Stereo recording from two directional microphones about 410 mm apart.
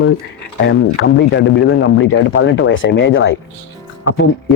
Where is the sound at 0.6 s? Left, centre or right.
Left.